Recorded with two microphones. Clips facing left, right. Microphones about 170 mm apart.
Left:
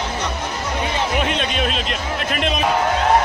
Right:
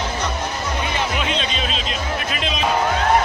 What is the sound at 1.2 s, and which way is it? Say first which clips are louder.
Speech: left 3 dB; 55° left (ahead or behind).